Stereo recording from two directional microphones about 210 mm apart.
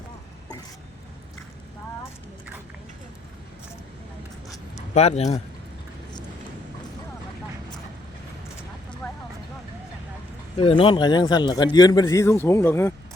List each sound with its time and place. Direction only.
4.9 s speech: 30° left (ahead or behind)
9.0 s vehicle: centre (ahead or behind)
10.6 s a man's voice: 25° left (ahead or behind)